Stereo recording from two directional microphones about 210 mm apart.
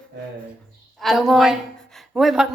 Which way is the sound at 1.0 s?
Centre (ahead or behind).